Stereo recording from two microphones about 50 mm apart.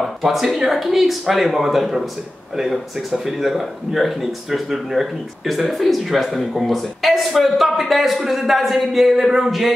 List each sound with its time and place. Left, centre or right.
0.0 s speech: centre